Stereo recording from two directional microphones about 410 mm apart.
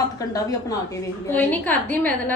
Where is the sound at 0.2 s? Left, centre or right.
Centre.